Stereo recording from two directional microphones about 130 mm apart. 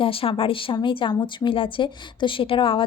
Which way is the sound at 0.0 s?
45° left (ahead or behind).